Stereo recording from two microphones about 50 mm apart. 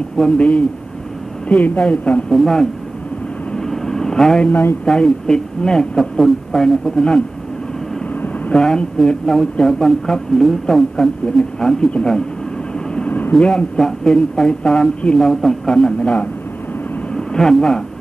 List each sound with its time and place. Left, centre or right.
0.4 s a woman's voice: left
2.3 s speech: centre
3.5 s vehicle: centre
4.8 s speech: centre
8.5 s a woman's voice: centre
13.4 s a woman's voice: left
13.7 s speech: centre